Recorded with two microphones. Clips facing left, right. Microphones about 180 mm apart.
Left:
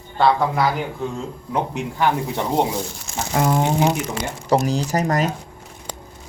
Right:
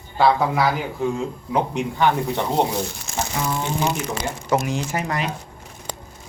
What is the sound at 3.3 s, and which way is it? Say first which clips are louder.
Speech: left 8 dB; 55° left (ahead or behind).